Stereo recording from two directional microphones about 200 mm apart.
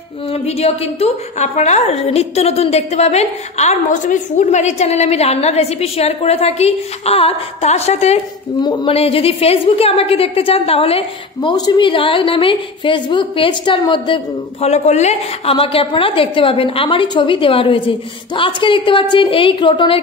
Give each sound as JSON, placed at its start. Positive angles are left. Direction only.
{"t": 0.3, "sound": "a woman's voice", "side_deg": 30}
{"t": 8.5, "sound": "a woman's voice", "side_deg": 20}